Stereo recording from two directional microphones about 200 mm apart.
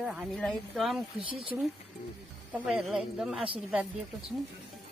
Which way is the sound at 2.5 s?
5° right (ahead or behind).